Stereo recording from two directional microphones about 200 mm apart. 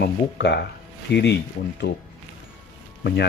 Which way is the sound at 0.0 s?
55° left (ahead or behind).